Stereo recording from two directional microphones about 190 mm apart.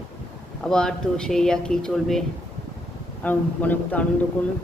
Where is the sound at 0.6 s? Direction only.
5° left (ahead or behind).